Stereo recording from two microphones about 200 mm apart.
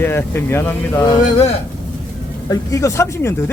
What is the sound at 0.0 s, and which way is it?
Speech, 10° left (ahead or behind).